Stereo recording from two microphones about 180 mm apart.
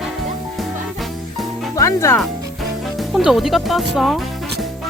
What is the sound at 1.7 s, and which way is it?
Speech, 15° left (ahead or behind).